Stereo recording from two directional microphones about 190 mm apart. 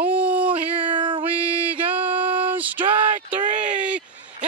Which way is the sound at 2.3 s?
10° right (ahead or behind).